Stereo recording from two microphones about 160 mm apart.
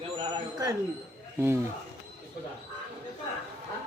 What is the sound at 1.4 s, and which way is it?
Speech, 15° right (ahead or behind).